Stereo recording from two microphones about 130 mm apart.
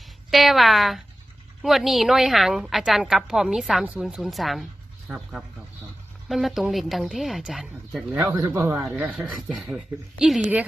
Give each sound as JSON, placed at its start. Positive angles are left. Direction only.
{"t": 0.3, "sound": "a woman's voice", "side_deg": 0}
{"t": 8.5, "sound": "speech", "side_deg": -20}
{"t": 9.0, "sound": "a woman's voice", "side_deg": -5}